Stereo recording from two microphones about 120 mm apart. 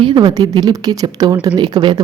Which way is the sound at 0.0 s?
40° right (ahead or behind).